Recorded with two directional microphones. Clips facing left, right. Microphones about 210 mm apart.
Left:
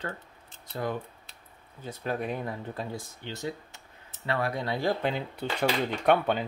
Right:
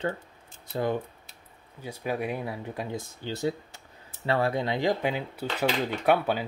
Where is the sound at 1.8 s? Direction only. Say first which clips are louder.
Right 1 dB; 10° right (ahead or behind).